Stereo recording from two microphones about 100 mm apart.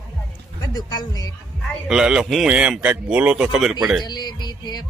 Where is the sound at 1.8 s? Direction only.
5° right (ahead or behind).